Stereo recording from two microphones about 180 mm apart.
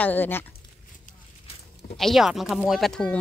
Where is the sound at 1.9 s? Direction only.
Centre (ahead or behind).